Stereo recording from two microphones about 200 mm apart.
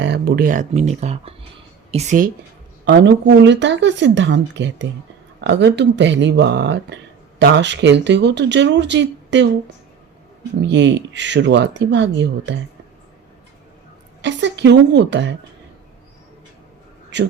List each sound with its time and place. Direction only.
0.0 s speech: 55° right (ahead or behind); by 2.3 s 40° right (ahead or behind)
2.8 s speech: 60° right (ahead or behind)
10.6 s speech: 60° right (ahead or behind)
14.2 s speech: 65° right (ahead or behind)
17.1 s speech: 60° right (ahead or behind)